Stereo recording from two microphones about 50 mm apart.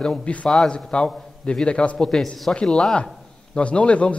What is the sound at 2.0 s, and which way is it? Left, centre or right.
Speech, centre.